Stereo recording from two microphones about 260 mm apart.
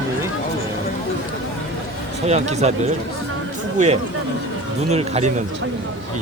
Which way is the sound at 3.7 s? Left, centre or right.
Right.